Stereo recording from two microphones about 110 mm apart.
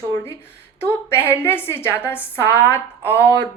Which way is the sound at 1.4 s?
20° left (ahead or behind).